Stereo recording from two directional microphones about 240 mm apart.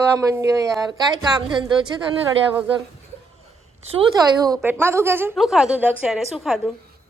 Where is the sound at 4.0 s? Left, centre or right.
Centre.